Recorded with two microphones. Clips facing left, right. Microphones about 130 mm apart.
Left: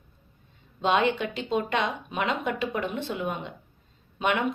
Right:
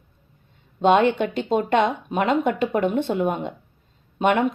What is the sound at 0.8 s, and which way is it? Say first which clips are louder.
A woman's voice: right 7 dB; 50° right (ahead or behind).